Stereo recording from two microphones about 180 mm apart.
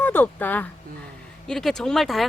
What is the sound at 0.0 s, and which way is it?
Speech, 10° left (ahead or behind).